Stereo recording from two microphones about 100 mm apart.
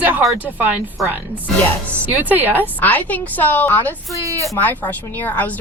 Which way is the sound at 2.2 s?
20° right (ahead or behind).